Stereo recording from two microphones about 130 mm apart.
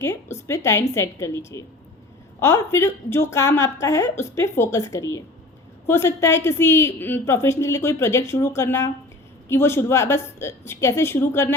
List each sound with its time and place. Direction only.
0.0 s a woman's voice: 20° left (ahead or behind)